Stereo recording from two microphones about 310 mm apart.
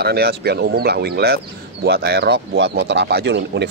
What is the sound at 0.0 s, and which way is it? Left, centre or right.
Speech, right.